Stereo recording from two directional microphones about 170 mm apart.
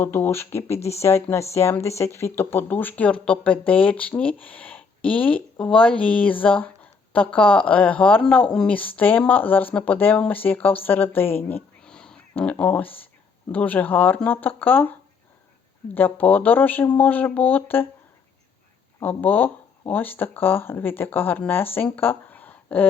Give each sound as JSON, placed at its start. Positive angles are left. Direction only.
{"t": 0.0, "sound": "speech", "side_deg": 15}
{"t": 10.8, "sound": "a sound", "side_deg": 10}
{"t": 12.5, "sound": "speech", "side_deg": 5}
{"t": 16.0, "sound": "speech", "side_deg": 10}
{"t": 18.9, "sound": "speech", "side_deg": 10}